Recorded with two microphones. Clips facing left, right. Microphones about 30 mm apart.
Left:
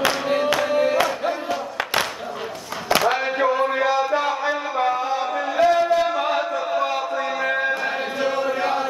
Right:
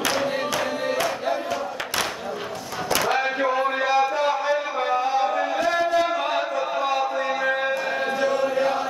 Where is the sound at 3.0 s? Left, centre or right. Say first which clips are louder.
Left 1 dB; centre.